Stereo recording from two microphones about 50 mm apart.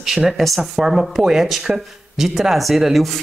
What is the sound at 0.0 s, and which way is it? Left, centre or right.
Speech, centre.